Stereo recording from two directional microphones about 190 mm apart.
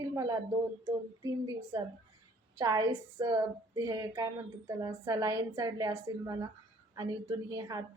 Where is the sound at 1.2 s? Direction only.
20° right (ahead or behind).